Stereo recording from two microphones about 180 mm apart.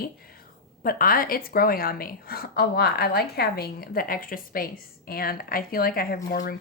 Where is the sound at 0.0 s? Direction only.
55° left (ahead or behind).